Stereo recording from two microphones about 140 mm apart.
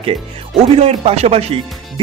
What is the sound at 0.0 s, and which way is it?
Speech, 45° right (ahead or behind).